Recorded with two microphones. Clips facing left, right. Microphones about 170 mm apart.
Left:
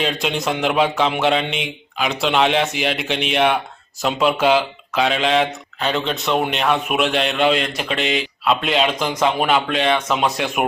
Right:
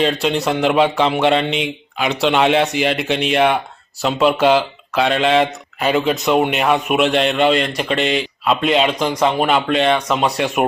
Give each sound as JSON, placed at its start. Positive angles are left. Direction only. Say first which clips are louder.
{"t": 0.0, "sound": "speech", "louder": "right 4 dB", "side_deg": 5}